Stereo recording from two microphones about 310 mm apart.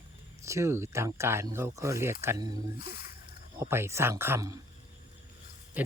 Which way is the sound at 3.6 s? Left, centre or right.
Centre.